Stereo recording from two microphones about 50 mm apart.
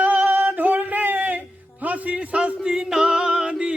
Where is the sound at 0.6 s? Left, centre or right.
Right.